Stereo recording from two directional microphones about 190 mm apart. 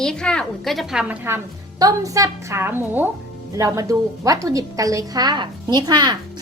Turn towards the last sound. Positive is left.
turn(degrees=-20)  # may be behind; listen again after turning